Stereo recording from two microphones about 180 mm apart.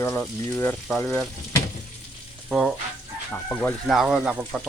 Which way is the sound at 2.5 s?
Centre (ahead or behind).